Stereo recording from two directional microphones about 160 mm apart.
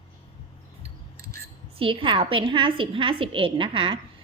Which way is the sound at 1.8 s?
35° right (ahead or behind).